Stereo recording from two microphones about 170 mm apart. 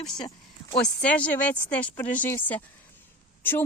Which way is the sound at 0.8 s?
5° left (ahead or behind).